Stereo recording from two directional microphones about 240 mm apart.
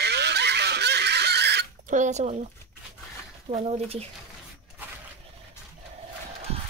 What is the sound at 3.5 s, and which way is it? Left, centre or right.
Speech, right.